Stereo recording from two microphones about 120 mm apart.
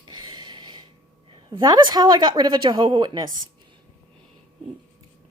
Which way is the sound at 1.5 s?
35° right (ahead or behind).